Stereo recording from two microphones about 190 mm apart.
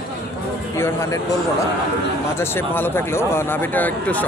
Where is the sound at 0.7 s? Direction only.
15° left (ahead or behind).